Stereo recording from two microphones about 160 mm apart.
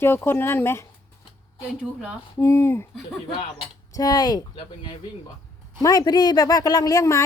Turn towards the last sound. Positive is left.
turn(degrees=20)  # may be behind; listen again after turning